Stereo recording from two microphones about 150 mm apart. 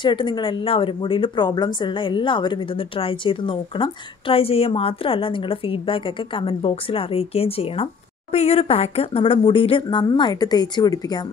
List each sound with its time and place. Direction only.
0.0 s speech: 30° left (ahead or behind)